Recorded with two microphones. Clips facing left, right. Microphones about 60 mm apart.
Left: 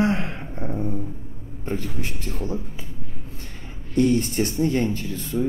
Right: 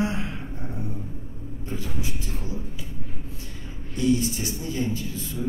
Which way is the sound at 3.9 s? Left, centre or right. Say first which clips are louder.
Left 3 dB; left.